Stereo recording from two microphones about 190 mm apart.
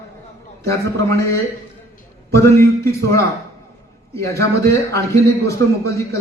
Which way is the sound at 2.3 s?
15° left (ahead or behind).